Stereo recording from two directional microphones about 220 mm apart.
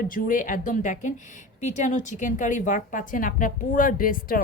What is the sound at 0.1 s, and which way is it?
A woman's voice, 35° left (ahead or behind).